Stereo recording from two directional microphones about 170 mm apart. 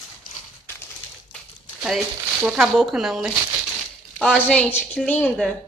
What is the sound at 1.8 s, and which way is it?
A woman's voice, centre (ahead or behind).